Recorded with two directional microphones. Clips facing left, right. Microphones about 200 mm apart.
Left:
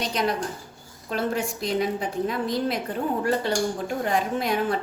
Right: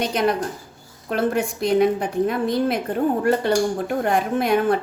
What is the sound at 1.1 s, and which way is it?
A woman's voice, 55° right (ahead or behind).